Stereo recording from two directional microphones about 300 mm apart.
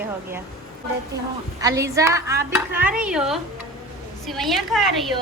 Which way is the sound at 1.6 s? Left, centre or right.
Centre.